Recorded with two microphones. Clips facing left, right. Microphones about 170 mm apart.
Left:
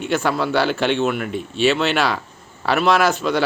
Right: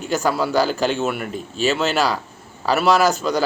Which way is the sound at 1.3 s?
40° right (ahead or behind).